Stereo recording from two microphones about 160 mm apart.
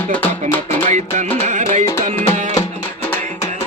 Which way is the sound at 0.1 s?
10° left (ahead or behind).